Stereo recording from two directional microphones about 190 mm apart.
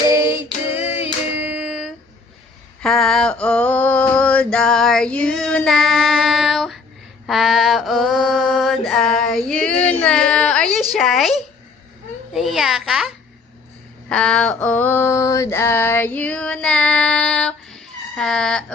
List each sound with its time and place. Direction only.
0.0 s female singing: 15° right (ahead or behind)
0.9 s music: 30° left (ahead or behind)
1.4 s a sound: 5° right (ahead or behind)
2.8 s male singing: centre (ahead or behind)
4.5 s child singing: 5° left (ahead or behind)
7.3 s mantra: centre (ahead or behind)
10.9 s a sound: centre (ahead or behind)
14.1 s female singing: 5° left (ahead or behind)